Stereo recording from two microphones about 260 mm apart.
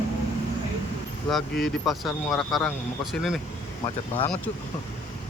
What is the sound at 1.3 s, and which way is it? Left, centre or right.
Speech, centre.